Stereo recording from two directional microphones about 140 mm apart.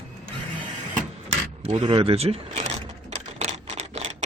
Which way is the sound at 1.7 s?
40° right (ahead or behind).